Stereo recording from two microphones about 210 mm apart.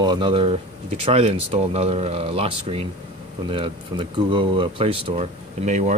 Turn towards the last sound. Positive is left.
turn(degrees=-35)  # may be behind; listen again after turning